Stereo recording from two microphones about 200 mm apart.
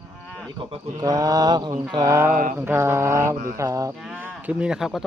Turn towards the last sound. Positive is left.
turn(degrees=0)  # may be behind; listen again after turning